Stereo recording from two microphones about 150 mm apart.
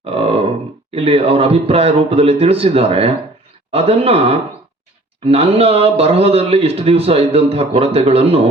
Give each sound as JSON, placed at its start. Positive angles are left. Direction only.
{"t": 0.0, "sound": "a man's voice", "side_deg": -40}